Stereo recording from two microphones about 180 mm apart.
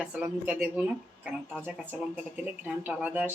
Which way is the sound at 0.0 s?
5° right (ahead or behind).